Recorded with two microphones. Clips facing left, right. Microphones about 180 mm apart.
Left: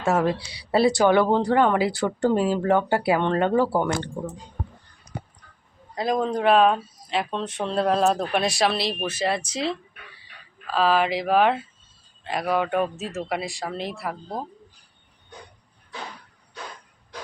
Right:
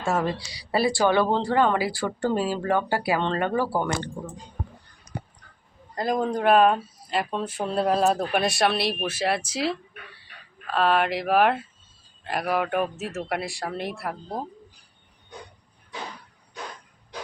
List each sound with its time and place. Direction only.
0.3 s speech: 25° left (ahead or behind)
5.9 s speech: centre (ahead or behind)